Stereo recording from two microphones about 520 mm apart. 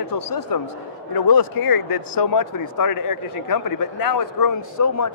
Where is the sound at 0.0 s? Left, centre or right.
Left.